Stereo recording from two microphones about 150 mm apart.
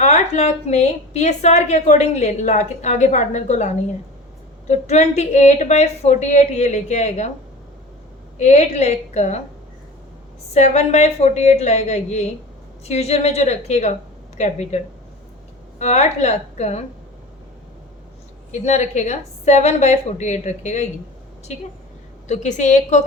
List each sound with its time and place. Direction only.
0.0 s a woman's voice: 50° left (ahead or behind)
8.4 s a woman's voice: 50° left (ahead or behind)
10.5 s a woman's voice: 50° left (ahead or behind)
15.8 s a woman's voice: 50° left (ahead or behind)
18.5 s a woman's voice: 50° left (ahead or behind)